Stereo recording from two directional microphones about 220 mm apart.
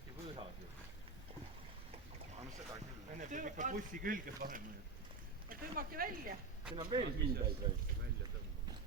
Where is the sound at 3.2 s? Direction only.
35° right (ahead or behind).